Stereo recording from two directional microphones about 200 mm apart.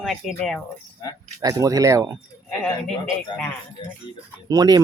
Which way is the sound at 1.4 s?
15° right (ahead or behind).